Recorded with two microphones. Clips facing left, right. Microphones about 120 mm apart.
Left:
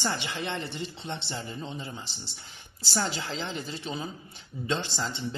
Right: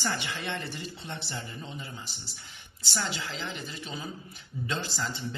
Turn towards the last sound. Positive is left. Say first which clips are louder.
# left 2 dB
turn(degrees=25)  # may be behind; listen again after turning